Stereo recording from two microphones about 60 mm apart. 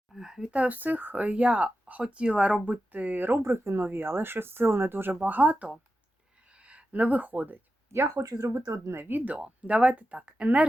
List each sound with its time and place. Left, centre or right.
0.1 s speech: centre
0.5 s speech: right
2.6 s speech: right
3.4 s speech: right
7.9 s speech: right
8.2 s speech: right
8.9 s speech: right
9.3 s speech: centre